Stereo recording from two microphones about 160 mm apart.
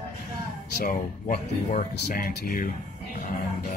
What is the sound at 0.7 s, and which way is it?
Speech, 75° left (ahead or behind).